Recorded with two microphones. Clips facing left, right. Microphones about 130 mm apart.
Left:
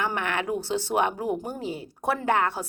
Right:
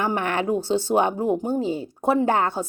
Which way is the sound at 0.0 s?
35° right (ahead or behind).